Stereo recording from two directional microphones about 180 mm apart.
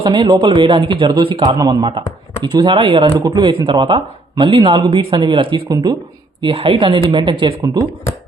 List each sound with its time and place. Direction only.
0.0 s speech: 25° right (ahead or behind)
6.4 s speech: 30° right (ahead or behind)